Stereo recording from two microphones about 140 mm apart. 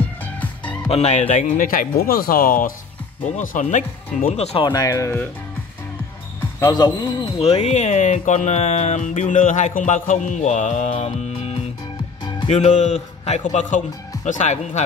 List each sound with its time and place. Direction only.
0.2 s music: 10° left (ahead or behind)
0.8 s speech: 50° left (ahead or behind); by 2.7 s 85° left
3.3 s speech: 60° left (ahead or behind)
4.3 s speech: 45° left (ahead or behind)
4.6 s speech: 25° left (ahead or behind)
6.6 s speech: 30° left (ahead or behind)
7.3 s speech: 50° left (ahead or behind)